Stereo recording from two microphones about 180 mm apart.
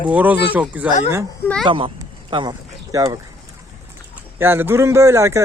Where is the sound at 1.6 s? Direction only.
30° right (ahead or behind).